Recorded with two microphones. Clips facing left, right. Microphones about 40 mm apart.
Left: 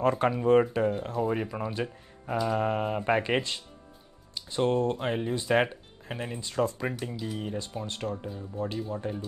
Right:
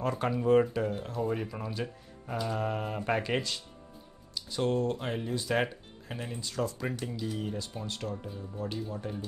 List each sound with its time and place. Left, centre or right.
0.0 s speech: left